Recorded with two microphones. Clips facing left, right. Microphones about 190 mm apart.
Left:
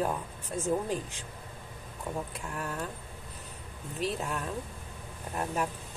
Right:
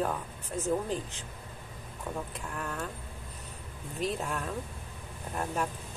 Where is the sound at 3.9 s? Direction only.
Centre (ahead or behind).